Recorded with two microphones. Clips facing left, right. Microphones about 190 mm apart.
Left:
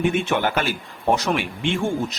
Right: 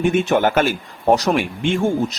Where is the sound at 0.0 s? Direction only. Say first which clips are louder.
Right 5 dB; 45° right (ahead or behind).